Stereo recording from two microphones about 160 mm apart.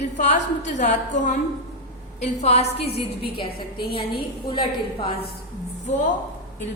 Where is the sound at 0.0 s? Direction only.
45° left (ahead or behind); by 5.1 s 30° left (ahead or behind).